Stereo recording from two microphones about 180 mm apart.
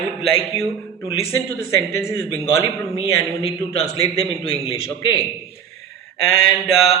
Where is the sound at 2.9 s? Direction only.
35° left (ahead or behind).